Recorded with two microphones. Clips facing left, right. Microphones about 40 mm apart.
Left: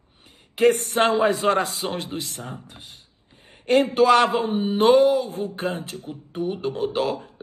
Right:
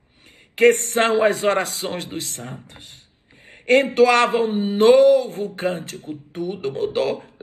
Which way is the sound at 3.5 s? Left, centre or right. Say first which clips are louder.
Right 3 dB; right.